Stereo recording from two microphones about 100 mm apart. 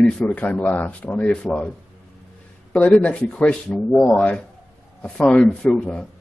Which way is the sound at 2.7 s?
10° left (ahead or behind).